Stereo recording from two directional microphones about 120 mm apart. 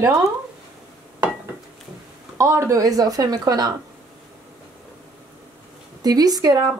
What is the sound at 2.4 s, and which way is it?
A woman's voice, 25° right (ahead or behind).